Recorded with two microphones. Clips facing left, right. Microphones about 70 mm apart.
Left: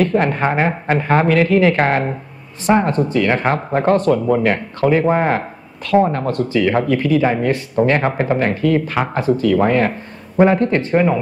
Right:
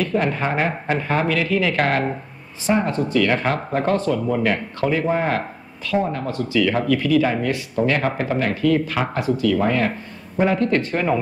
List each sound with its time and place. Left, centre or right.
0.0 s speech: left
3.1 s speech: left
6.6 s speech: left
10.7 s speech: left